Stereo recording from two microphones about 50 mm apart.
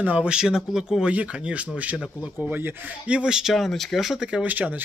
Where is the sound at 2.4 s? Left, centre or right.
Right.